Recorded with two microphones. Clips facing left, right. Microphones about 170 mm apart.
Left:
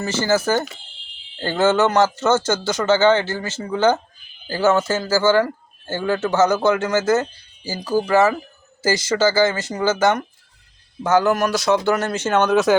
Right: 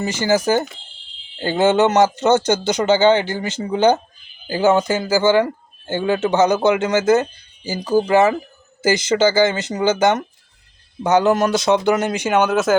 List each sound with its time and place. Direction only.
0.0 s speech: 15° right (ahead or behind)